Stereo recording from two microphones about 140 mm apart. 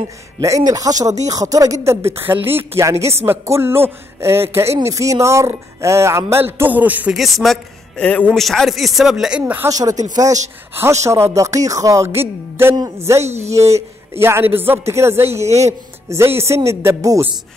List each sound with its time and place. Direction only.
0.4 s a woman's voice: 25° right (ahead or behind)
7.2 s speech: centre (ahead or behind)
9.4 s a woman's voice: 15° right (ahead or behind)
13.2 s speech: 50° right (ahead or behind)
13.6 s a woman's voice: 20° right (ahead or behind)